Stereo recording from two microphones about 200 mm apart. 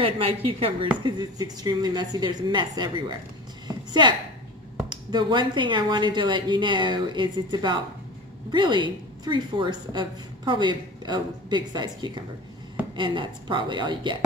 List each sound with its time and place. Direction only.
0.0 s a woman's voice: 30° right (ahead or behind)
3.6 s a sound: 20° right (ahead or behind)
4.8 s a woman's voice: 20° right (ahead or behind)